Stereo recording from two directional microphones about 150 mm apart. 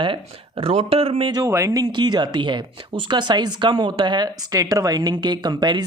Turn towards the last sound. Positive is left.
turn(degrees=-30)  # may be behind; listen again after turning